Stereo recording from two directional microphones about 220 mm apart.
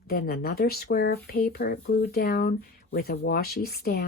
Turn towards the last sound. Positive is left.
turn(degrees=45)  # may be behind; listen again after turning